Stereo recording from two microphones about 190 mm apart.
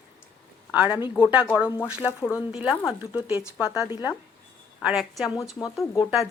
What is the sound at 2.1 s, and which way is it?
Speech, 15° left (ahead or behind).